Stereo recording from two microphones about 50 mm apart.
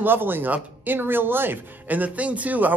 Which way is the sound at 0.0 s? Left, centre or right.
Right.